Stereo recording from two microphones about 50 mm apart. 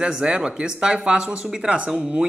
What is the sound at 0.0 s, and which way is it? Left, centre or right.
Speech, centre.